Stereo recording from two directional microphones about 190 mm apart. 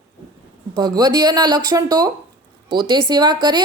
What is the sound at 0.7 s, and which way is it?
A woman's voice, 20° right (ahead or behind).